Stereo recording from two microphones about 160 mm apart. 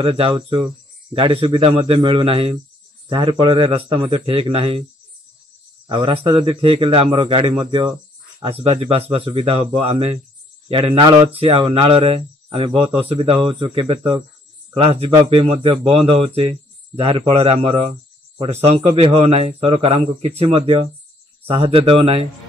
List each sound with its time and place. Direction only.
0.0 s speech: 35° right (ahead or behind)
5.9 s speech: 35° right (ahead or behind)
17.3 s speech: 35° right (ahead or behind)